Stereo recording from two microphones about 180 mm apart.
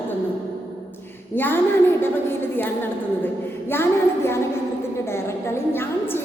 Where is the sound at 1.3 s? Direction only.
10° left (ahead or behind).